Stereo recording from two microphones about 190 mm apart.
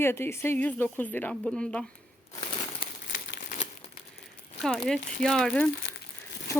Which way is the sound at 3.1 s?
70° left (ahead or behind).